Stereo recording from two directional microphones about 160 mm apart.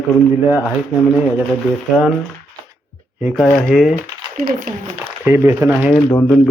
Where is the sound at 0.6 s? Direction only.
10° left (ahead or behind).